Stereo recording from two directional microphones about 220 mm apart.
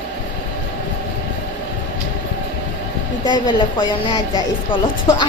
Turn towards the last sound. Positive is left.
turn(degrees=20)  # may be behind; listen again after turning